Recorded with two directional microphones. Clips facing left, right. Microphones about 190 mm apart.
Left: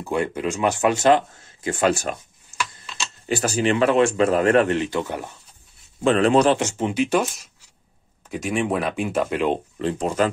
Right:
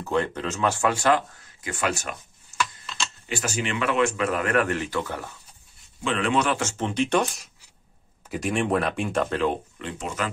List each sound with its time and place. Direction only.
0.0 s a man's voice: 10° left (ahead or behind); by 2.1 s 30° left (ahead or behind)
3.3 s speech: 35° left (ahead or behind); by 5.3 s 20° left (ahead or behind)
6.0 s speech: 40° left (ahead or behind)
6.6 s speech: 10° left (ahead or behind)
9.8 s speech: 35° left (ahead or behind)